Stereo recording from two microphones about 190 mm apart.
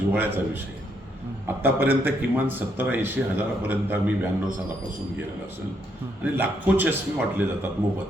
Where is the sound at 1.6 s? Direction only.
10° right (ahead or behind).